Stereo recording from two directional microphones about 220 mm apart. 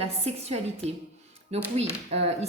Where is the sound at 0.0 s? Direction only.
30° right (ahead or behind).